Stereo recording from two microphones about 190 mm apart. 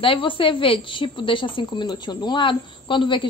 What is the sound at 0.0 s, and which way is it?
A woman's voice, 25° left (ahead or behind).